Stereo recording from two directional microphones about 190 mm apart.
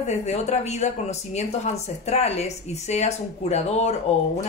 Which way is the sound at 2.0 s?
35° left (ahead or behind).